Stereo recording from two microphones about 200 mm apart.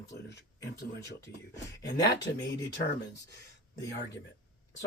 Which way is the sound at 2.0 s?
60° left (ahead or behind).